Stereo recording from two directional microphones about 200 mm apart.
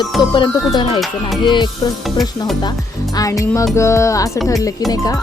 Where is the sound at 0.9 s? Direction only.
Centre (ahead or behind).